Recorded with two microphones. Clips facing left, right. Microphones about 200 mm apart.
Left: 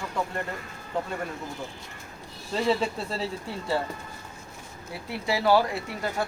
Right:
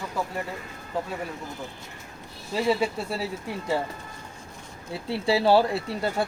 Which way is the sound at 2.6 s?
10° right (ahead or behind).